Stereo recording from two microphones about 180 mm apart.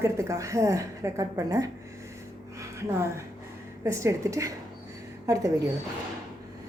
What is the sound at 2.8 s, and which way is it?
A woman's voice, 15° right (ahead or behind).